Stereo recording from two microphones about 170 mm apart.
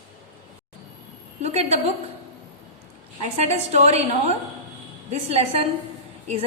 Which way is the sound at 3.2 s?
40° right (ahead or behind).